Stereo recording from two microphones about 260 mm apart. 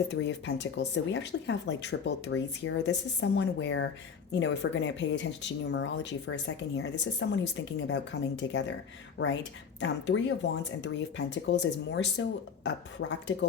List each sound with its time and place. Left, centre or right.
0.1 s speech: left